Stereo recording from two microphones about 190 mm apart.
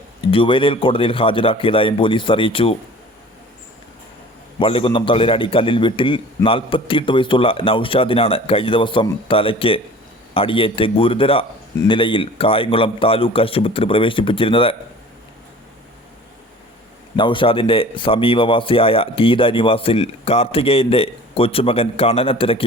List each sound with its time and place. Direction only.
0.3 s speech: 25° left (ahead or behind)
4.6 s speech: 30° left (ahead or behind)
17.2 s speech: 25° left (ahead or behind)